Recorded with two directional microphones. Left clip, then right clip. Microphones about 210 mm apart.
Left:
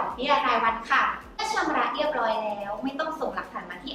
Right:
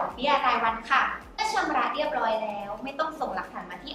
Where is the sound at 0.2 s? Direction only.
15° right (ahead or behind).